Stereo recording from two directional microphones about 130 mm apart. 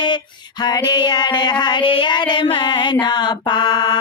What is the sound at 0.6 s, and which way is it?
Music, 30° left (ahead or behind).